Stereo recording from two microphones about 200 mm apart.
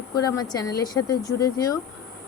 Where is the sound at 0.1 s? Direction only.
20° left (ahead or behind).